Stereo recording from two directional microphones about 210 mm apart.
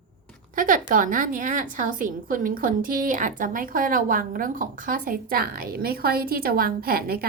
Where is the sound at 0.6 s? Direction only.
40° right (ahead or behind).